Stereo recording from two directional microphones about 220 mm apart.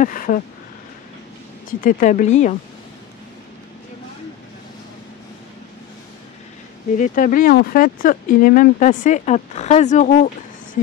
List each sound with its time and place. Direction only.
0.0 s speech: 40° left (ahead or behind)
1.7 s speech: 40° left (ahead or behind)
7.0 s speech: 35° left (ahead or behind)